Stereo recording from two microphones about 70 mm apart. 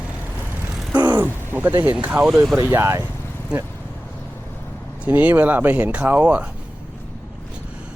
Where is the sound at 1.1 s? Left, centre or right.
Right.